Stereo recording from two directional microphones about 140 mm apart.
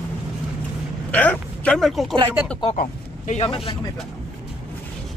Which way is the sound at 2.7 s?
60° left (ahead or behind).